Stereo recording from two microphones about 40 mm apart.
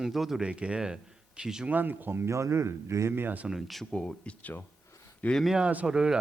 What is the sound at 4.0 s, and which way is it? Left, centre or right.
Speech, left.